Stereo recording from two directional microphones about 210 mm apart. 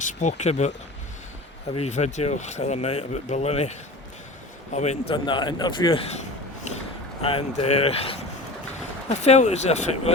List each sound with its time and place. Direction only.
0.0 s speech: 35° left (ahead or behind)
1.7 s a man's voice: 30° left (ahead or behind)